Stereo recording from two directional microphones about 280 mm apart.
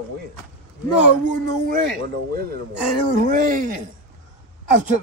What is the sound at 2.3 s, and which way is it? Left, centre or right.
A man's voice, right.